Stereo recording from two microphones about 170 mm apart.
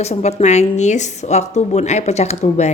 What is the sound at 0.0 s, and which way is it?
A woman's voice, 40° left (ahead or behind).